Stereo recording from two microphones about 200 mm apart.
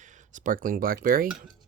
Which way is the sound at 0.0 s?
40° right (ahead or behind).